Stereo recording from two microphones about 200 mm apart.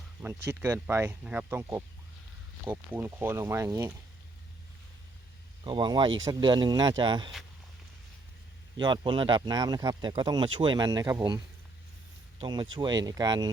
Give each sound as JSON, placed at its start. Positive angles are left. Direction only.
{"t": 0.2, "sound": "speech", "side_deg": -10}
{"t": 2.9, "sound": "speech", "side_deg": -10}
{"t": 5.6, "sound": "speech", "side_deg": -25}
{"t": 8.8, "sound": "speech", "side_deg": -25}
{"t": 12.4, "sound": "speech", "side_deg": -25}